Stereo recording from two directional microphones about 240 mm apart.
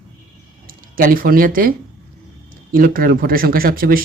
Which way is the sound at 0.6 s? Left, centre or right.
Right.